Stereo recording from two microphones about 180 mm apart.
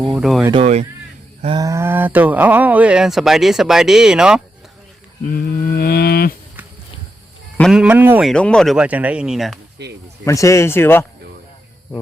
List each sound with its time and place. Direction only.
0.2 s speech: centre (ahead or behind)
0.5 s speech: 35° right (ahead or behind)
1.5 s speech: 15° right (ahead or behind)
5.2 s a sound: 55° left (ahead or behind)
7.6 s speech: 5° right (ahead or behind)
8.3 s speech: 5° left (ahead or behind)
9.8 s speech: 70° right (ahead or behind)
10.2 s speech: 15° left (ahead or behind)